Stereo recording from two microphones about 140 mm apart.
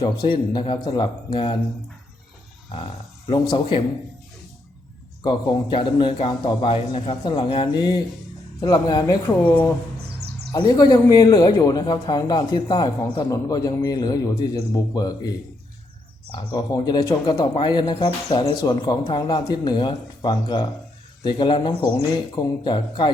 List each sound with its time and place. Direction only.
0.0 s a man's voice: 35° left (ahead or behind)
2.7 s a man's voice: 40° left (ahead or behind)
5.2 s a man's voice: 30° left (ahead or behind)
9.2 s speech: 10° left (ahead or behind)
10.6 s speech: 30° left (ahead or behind)
16.5 s a man's voice: 30° left (ahead or behind)